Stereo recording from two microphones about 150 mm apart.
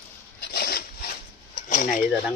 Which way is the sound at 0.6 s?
90° left.